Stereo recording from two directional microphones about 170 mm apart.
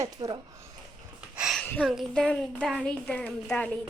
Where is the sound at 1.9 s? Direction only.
Centre (ahead or behind).